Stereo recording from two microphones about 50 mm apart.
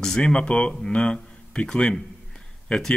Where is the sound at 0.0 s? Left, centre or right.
Centre.